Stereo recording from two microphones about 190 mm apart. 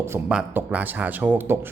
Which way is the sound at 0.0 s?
10° right (ahead or behind).